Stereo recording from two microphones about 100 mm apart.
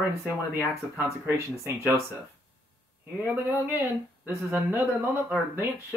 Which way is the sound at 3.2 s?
15° right (ahead or behind).